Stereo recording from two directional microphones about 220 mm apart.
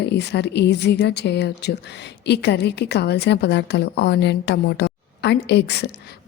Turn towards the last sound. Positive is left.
turn(degrees=50)  # may be behind; listen again after turning